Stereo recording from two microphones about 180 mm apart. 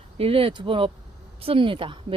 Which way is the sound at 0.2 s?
30° right (ahead or behind).